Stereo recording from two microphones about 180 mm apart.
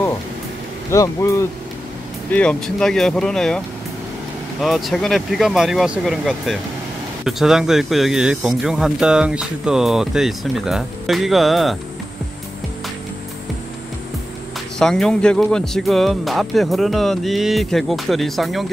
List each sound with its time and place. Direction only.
0.9 s speech: 15° left (ahead or behind)
2.3 s speech: 5° left (ahead or behind)
14.8 s speech: 5° left (ahead or behind)